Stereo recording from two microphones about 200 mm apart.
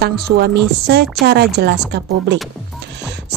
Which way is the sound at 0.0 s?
55° right (ahead or behind).